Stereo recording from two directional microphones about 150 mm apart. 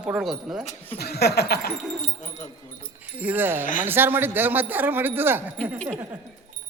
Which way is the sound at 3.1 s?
10° right (ahead or behind).